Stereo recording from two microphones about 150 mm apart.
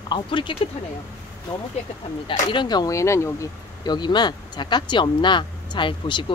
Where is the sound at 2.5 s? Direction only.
30° left (ahead or behind).